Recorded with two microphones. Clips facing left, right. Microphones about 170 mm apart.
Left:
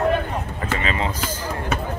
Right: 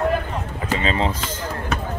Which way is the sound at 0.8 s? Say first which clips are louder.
Right 4 dB; 30° right (ahead or behind).